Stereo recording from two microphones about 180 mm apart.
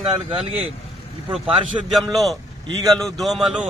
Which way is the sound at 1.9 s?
Centre (ahead or behind).